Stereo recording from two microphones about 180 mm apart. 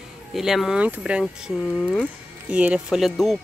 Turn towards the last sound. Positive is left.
turn(degrees=0)  # may be behind; listen again after turning